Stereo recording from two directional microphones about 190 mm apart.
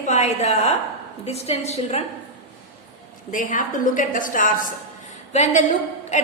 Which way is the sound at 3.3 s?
45° left (ahead or behind).